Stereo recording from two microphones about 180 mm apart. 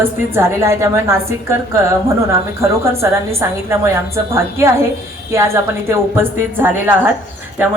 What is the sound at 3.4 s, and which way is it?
A woman's voice, 15° right (ahead or behind).